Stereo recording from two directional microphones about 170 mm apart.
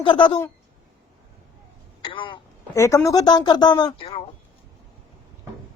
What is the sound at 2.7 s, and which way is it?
Speech, 20° left (ahead or behind).